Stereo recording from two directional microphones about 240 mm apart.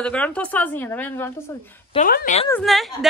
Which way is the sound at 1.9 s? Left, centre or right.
Left.